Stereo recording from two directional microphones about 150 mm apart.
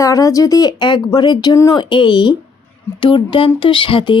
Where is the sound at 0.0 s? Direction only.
20° left (ahead or behind).